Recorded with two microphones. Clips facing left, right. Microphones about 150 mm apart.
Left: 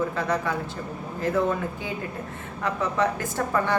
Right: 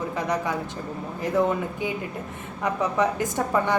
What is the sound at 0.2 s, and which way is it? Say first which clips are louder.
Speech: even; 15° right (ahead or behind).